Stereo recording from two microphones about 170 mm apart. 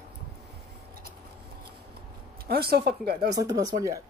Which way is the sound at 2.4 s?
65° right (ahead or behind).